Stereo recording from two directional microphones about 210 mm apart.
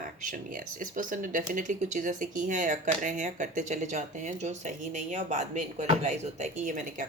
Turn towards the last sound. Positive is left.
turn(degrees=-35)  # may be behind; listen again after turning